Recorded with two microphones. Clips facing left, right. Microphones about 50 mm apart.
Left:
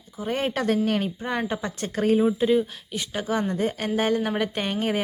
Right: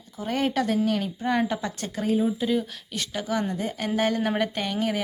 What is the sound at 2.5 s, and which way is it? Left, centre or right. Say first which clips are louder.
Speech: left 4 dB; centre.